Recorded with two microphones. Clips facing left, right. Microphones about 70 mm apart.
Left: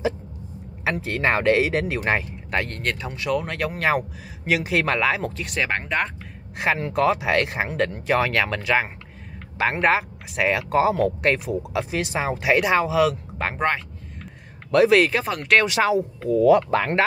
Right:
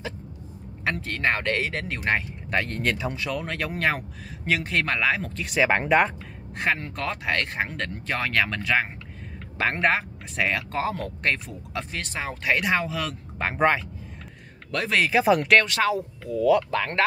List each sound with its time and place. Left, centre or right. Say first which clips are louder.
0.8 s speech: left 3 dB; centre
5.6 s speech: right 4 dB; centre
6.6 s speech: left 6 dB; centre
15.6 s speech: left 4 dB; centre